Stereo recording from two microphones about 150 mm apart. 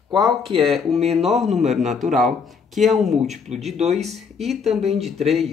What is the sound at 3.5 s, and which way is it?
Speech, 45° right (ahead or behind).